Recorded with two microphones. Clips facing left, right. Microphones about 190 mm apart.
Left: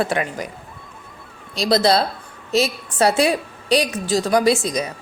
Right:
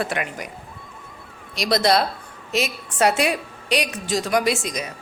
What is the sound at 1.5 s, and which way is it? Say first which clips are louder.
A woman's voice: left 2 dB; 30° left (ahead or behind).